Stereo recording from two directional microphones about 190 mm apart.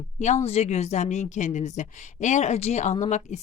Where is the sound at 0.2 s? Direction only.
40° left (ahead or behind).